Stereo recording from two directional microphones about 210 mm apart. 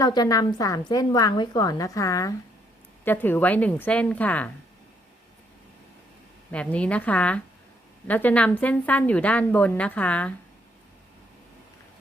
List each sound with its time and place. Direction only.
0.0 s a woman's voice: 20° left (ahead or behind)
6.5 s a woman's voice: 5° left (ahead or behind)